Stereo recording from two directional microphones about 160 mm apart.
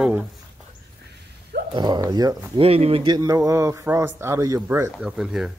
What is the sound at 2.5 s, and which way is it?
A man's voice, 40° right (ahead or behind).